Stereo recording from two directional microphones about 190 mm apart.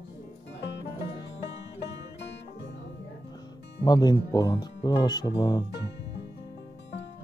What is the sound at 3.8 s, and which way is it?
Speech, 20° left (ahead or behind).